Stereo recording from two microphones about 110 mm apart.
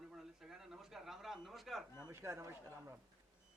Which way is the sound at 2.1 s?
25° right (ahead or behind).